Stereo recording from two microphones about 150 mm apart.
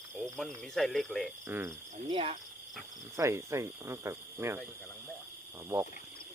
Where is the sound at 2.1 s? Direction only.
40° right (ahead or behind).